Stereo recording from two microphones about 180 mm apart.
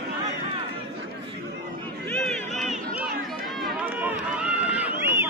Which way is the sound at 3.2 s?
Centre (ahead or behind).